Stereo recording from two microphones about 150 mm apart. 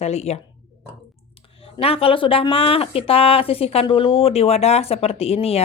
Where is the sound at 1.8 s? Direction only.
40° left (ahead or behind).